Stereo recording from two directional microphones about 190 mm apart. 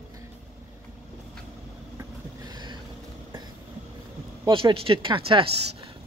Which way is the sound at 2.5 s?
20° right (ahead or behind).